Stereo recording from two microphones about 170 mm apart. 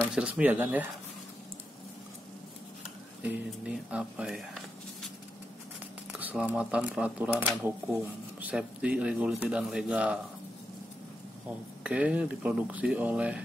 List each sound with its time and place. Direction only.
0.1 s speech: 10° right (ahead or behind)
3.2 s speech: 10° right (ahead or behind)
6.1 s speech: 10° right (ahead or behind)
11.8 s speech: 5° right (ahead or behind)